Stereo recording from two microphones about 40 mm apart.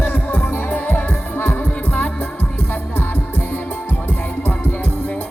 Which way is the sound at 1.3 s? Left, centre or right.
Left.